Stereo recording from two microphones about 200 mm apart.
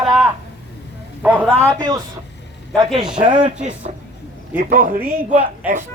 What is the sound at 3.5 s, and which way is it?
A man's voice, 35° right (ahead or behind).